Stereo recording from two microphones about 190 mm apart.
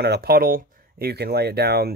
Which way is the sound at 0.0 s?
55° right (ahead or behind).